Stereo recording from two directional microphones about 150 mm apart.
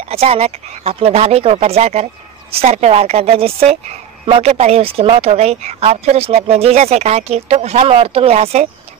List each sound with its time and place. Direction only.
0.1 s speech: 45° right (ahead or behind)